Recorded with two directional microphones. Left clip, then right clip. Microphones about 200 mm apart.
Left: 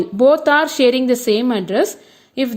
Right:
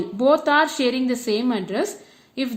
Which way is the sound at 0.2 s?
40° left (ahead or behind).